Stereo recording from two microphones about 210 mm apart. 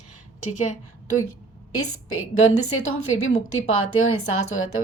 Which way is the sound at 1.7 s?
90° left.